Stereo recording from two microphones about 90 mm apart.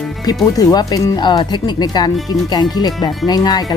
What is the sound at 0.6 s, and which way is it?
Speech, 45° left (ahead or behind).